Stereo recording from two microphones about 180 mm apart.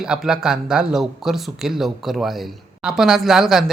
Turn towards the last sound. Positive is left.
turn(degrees=0)  # may be behind; listen again after turning